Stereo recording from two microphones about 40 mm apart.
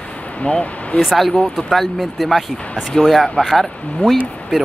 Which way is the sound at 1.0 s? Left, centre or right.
Centre.